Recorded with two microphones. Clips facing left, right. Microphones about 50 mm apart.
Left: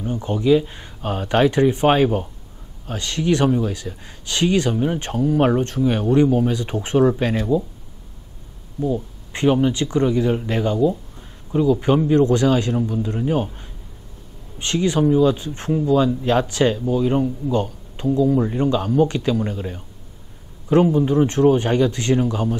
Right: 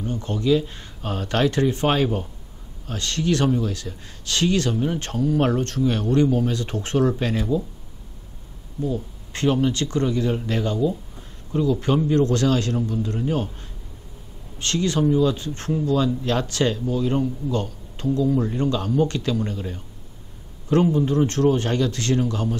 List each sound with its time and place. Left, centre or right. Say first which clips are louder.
0.0 s speech: left 3 dB; centre
8.8 s speech: left 4 dB; centre